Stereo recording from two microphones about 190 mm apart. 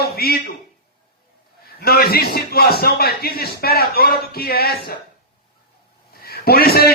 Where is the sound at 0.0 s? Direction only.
55° left (ahead or behind).